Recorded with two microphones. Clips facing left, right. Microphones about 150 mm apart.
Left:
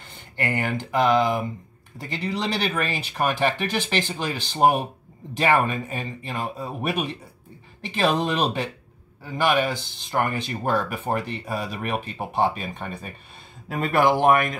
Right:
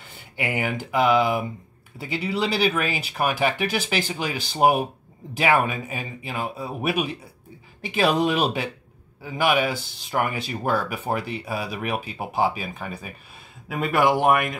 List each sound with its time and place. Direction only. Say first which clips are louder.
0.0 s speech: left 1 dB; 10° right (ahead or behind)